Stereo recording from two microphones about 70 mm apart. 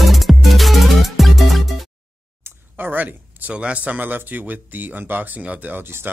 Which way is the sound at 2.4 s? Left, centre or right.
Right.